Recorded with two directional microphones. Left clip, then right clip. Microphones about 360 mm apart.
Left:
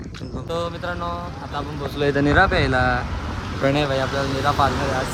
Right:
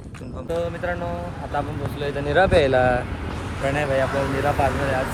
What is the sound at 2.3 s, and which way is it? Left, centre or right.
Speech, centre.